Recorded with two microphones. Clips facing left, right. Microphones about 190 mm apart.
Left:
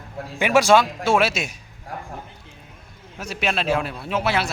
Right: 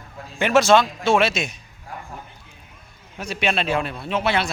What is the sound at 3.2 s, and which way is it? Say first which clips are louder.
A man's voice: right 1 dB; centre (ahead or behind).